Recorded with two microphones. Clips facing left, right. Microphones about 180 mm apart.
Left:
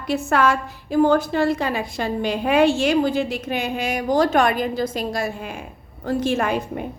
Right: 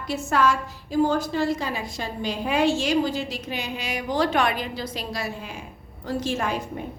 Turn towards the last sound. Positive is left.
turn(degrees=60)  # may be behind; listen again after turning